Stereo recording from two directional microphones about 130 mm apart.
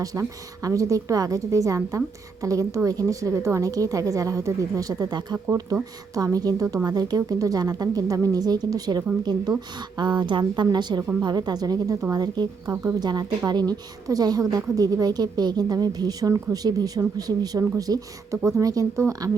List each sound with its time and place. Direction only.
0.0 s a woman's voice: 25° right (ahead or behind)
12.7 s a woman's voice: 20° right (ahead or behind)
13.0 s a woman's voice: 30° right (ahead or behind)